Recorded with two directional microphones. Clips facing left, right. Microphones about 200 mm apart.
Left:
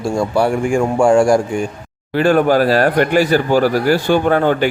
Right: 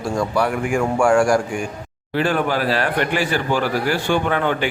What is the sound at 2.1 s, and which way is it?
Speech, 45° left (ahead or behind).